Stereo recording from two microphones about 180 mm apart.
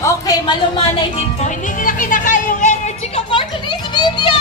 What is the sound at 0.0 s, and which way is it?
Music, 20° left (ahead or behind).